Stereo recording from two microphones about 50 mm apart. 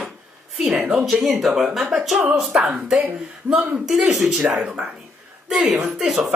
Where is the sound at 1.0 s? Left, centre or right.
Centre.